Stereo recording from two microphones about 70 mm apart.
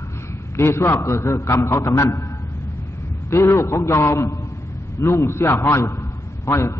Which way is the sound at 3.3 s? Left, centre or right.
Left.